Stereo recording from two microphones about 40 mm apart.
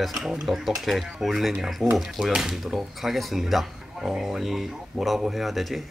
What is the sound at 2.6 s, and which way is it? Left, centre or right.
Speech, centre.